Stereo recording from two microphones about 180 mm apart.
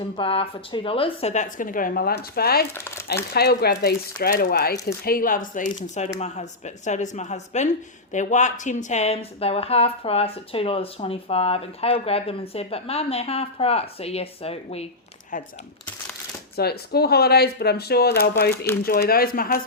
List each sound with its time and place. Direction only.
0.2 s speech: 30° left (ahead or behind); by 2.6 s 60° left (ahead or behind)
2.7 s speech: 15° left (ahead or behind)
3.3 s speech: 60° left (ahead or behind)
4.2 s speech: 50° left (ahead or behind); by 14.8 s 35° left (ahead or behind)
16.6 s speech: 60° left (ahead or behind)
18.5 s speech: 10° left (ahead or behind)
18.8 s speech: 55° left (ahead or behind)